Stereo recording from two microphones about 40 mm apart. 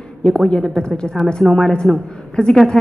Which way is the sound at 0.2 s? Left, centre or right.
Left.